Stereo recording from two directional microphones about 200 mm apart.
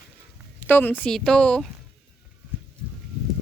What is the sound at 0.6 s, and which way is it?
A woman's voice, 10° left (ahead or behind).